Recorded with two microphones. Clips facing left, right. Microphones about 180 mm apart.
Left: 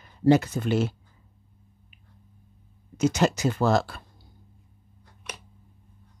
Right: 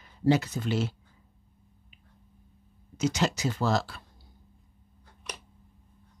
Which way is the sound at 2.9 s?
55° left (ahead or behind).